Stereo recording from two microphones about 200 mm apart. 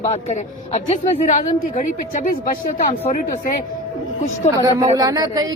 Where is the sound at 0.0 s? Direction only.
35° left (ahead or behind).